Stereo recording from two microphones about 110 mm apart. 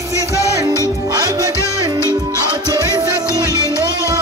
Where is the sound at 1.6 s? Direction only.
25° left (ahead or behind).